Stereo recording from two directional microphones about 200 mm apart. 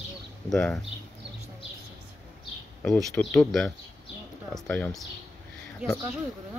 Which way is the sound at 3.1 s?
5° left (ahead or behind).